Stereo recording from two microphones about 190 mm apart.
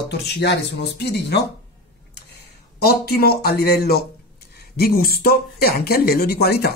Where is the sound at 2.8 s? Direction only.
55° left (ahead or behind).